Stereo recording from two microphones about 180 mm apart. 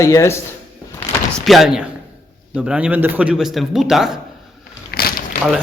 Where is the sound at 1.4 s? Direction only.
Centre (ahead or behind).